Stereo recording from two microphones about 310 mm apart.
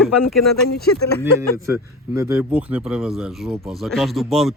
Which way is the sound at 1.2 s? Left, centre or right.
Centre.